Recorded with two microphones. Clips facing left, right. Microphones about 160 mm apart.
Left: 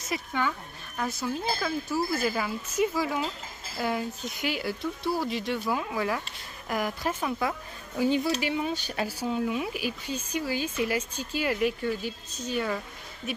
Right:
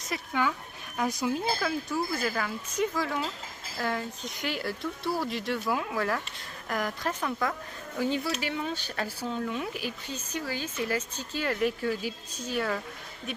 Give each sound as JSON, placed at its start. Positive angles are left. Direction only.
{"t": 0.0, "sound": "speech", "side_deg": 0}
{"t": 1.6, "sound": "speech", "side_deg": 0}
{"t": 11.8, "sound": "speech", "side_deg": -5}